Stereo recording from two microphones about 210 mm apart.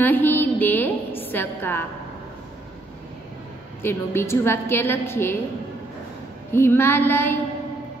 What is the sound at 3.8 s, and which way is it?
A woman's voice, 10° left (ahead or behind).